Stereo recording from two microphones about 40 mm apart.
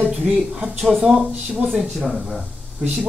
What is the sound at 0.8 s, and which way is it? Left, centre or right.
Speech, centre.